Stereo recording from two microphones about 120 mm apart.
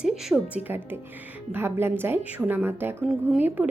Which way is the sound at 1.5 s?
20° right (ahead or behind).